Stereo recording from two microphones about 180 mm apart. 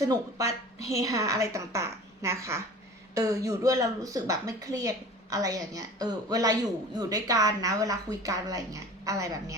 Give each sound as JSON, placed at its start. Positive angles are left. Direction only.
{"t": 0.0, "sound": "a woman's voice", "side_deg": -15}